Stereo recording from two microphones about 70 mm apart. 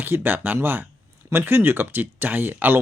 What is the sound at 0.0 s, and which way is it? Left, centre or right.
Speech, right.